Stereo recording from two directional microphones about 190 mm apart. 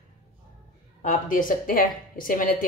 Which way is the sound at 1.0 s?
45° left (ahead or behind).